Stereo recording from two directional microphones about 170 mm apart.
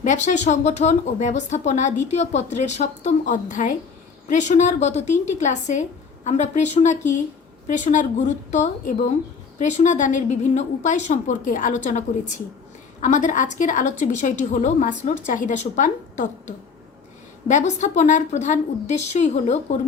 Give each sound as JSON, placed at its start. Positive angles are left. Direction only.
{"t": 0.0, "sound": "a woman's voice", "side_deg": 45}